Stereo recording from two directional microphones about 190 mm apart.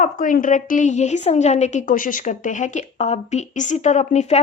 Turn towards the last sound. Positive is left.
turn(degrees=35)  # may be behind; listen again after turning